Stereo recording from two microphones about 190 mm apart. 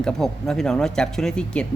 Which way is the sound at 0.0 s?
5° left (ahead or behind).